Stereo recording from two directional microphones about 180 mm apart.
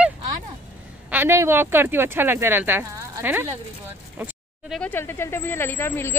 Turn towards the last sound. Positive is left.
turn(degrees=15)  # may be behind; listen again after turning